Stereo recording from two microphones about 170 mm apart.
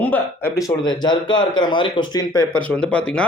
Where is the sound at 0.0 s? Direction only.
10° left (ahead or behind).